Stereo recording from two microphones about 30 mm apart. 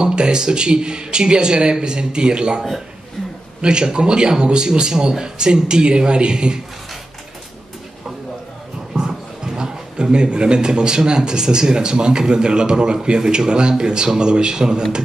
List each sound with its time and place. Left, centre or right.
0.0 s speech: right
3.6 s speech: right
8.9 s speech: right